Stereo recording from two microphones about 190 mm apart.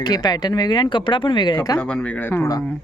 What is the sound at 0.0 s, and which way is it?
Speech, 20° left (ahead or behind).